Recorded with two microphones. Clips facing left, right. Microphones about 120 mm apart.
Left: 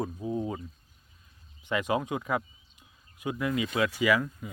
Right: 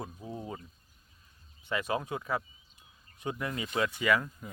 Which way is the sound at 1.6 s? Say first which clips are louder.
Left 4 dB; 20° left (ahead or behind).